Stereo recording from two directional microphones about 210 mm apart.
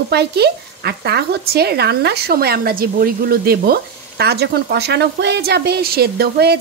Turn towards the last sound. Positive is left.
turn(degrees=-50)  # may be behind; listen again after turning